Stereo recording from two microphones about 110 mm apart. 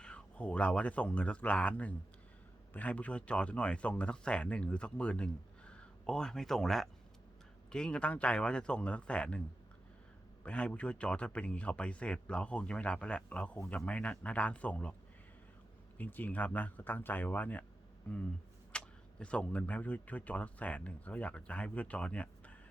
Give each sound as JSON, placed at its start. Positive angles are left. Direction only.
{"t": 0.0, "sound": "speech", "side_deg": 10}
{"t": 10.4, "sound": "speech", "side_deg": 10}
{"t": 16.0, "sound": "speech", "side_deg": 15}